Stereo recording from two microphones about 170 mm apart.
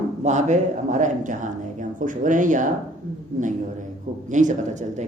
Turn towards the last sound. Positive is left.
turn(degrees=-45)  # may be behind; listen again after turning